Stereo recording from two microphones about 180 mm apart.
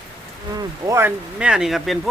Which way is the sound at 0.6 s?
15° right (ahead or behind).